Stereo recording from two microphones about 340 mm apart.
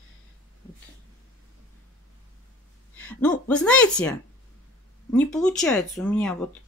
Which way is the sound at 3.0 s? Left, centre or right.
Centre.